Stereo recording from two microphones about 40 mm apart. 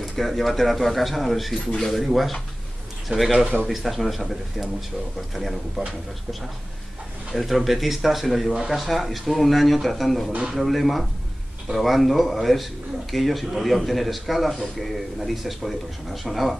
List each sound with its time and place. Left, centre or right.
0.2 s a man's voice: centre
3.1 s a man's voice: right
3.6 s a man's voice: centre
7.3 s a man's voice: centre